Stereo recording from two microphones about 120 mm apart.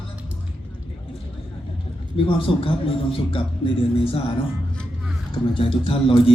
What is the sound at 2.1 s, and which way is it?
A man's voice, 50° left (ahead or behind).